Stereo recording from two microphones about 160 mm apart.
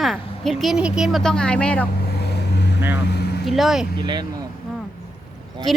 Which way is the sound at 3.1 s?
90° left.